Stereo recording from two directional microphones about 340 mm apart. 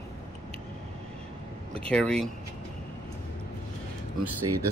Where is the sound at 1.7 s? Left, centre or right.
Centre.